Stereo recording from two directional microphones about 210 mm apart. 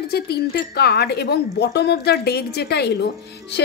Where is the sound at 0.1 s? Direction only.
50° left (ahead or behind).